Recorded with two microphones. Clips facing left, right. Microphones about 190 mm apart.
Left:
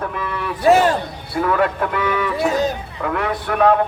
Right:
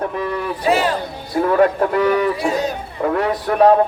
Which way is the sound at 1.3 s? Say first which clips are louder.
Right 4 dB; 35° right (ahead or behind).